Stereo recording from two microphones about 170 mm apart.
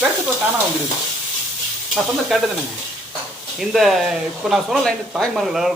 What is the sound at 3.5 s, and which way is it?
Speech, centre (ahead or behind).